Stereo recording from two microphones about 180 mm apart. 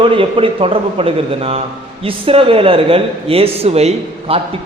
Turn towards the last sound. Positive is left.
turn(degrees=-35)  # may be behind; listen again after turning